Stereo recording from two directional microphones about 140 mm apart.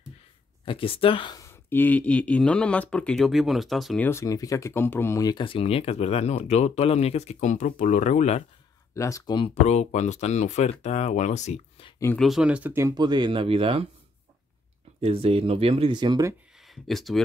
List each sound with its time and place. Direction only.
0.7 s speech: 40° left (ahead or behind)
1.4 s speech: 15° left (ahead or behind); by 4.0 s centre (ahead or behind)
4.0 s speech: 20° left (ahead or behind); by 8.5 s 55° left (ahead or behind)
8.9 s speech: 20° left (ahead or behind)
9.6 s speech: 55° left (ahead or behind)
12.2 s speech: 5° right (ahead or behind)
12.9 s speech: 30° right (ahead or behind)
15.0 s speech: 45° right (ahead or behind)
16.5 s speech: centre (ahead or behind)